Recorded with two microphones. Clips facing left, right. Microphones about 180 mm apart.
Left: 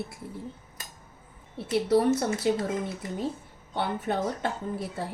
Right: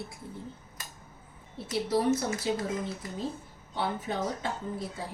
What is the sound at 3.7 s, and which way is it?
Speech, 65° left (ahead or behind).